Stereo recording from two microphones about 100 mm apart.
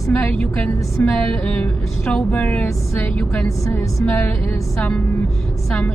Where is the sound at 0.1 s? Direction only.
15° left (ahead or behind).